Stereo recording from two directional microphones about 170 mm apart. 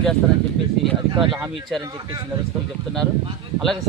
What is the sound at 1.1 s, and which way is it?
Speech, 30° right (ahead or behind).